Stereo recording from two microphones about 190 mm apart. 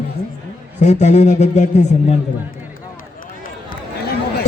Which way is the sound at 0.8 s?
35° left (ahead or behind).